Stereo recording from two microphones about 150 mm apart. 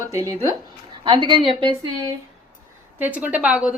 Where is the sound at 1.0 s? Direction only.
30° right (ahead or behind).